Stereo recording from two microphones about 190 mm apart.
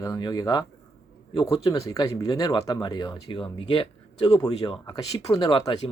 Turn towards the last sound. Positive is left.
turn(degrees=20)  # may be behind; listen again after turning